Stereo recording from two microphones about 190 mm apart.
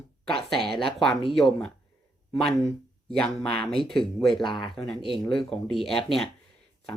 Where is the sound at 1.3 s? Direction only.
Centre (ahead or behind).